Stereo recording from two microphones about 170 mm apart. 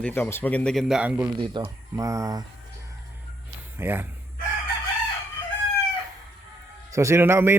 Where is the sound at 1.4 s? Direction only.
25° right (ahead or behind).